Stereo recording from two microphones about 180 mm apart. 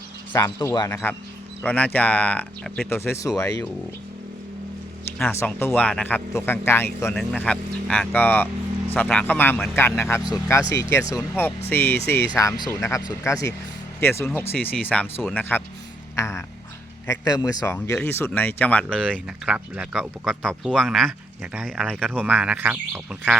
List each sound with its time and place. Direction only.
0.3 s speech: 15° left (ahead or behind)
5.1 s speech: 10° left (ahead or behind)
19.5 s speech: 5° right (ahead or behind)
22.2 s speech: 10° right (ahead or behind)